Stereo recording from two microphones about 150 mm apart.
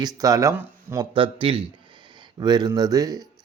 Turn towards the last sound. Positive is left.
turn(degrees=-25)  # may be behind; listen again after turning